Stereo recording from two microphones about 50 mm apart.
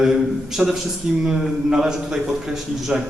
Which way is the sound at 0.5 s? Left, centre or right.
Centre.